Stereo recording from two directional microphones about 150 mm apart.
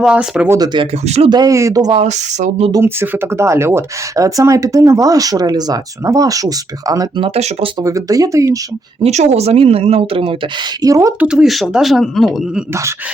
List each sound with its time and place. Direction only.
0.0 s speech: 5° right (ahead or behind)
0.5 s speech: 30° right (ahead or behind)
1.0 s speech: 45° right (ahead or behind)
1.3 s speech: 25° right (ahead or behind)
1.9 s speech: 45° right (ahead or behind)
2.7 s speech: 15° right (ahead or behind)
7.2 s speech: 40° right (ahead or behind)
7.9 s speech: 20° right (ahead or behind)
9.0 s speech: 50° right (ahead or behind)
10.8 s speech: 20° right (ahead or behind)
11.2 s speech: 5° right (ahead or behind)